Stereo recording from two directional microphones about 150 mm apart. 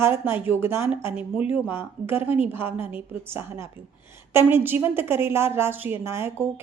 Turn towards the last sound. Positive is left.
turn(degrees=-15)  # may be behind; listen again after turning